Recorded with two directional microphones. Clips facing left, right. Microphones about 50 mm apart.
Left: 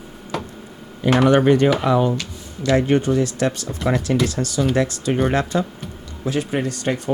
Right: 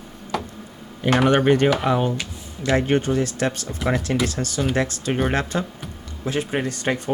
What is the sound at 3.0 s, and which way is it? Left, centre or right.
Speech, right.